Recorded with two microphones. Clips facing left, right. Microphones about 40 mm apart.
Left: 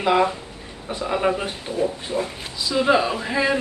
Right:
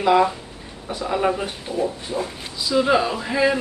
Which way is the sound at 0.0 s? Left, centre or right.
Centre.